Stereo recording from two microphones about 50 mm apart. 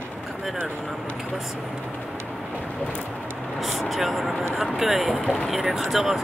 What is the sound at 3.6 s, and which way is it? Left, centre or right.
Speech, centre.